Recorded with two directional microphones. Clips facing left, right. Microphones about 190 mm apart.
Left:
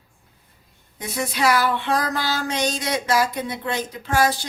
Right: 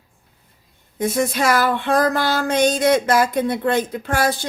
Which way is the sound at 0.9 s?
50° right (ahead or behind).